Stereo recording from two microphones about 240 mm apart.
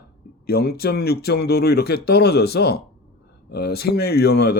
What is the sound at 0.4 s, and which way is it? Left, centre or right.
Speech, left.